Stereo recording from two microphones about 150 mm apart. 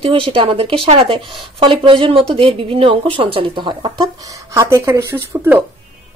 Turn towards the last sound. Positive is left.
turn(degrees=-15)  # may be behind; listen again after turning